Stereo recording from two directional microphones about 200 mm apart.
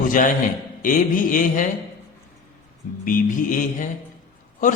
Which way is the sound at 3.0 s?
45° left (ahead or behind).